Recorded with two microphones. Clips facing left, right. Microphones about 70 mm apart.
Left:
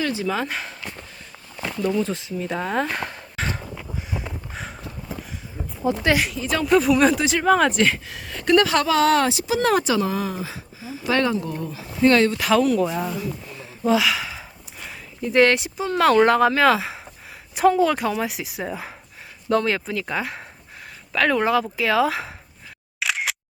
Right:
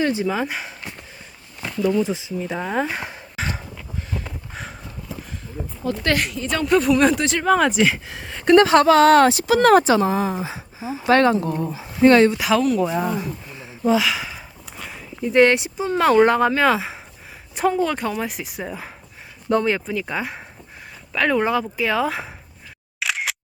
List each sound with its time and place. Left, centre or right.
0.0 s speech: right
0.3 s speech: centre
2.0 s speech: centre
3.8 s a sound: centre
5.8 s speech: centre
6.1 s speech: centre
8.1 s speech: right
11.0 s speech: right
12.3 s speech: centre
12.9 s speech: centre
13.8 s speech: centre
19.5 s speech: centre
23.0 s single-lens reflex camera: centre